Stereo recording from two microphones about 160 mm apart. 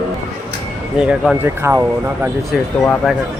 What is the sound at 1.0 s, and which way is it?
Speech, 5° right (ahead or behind).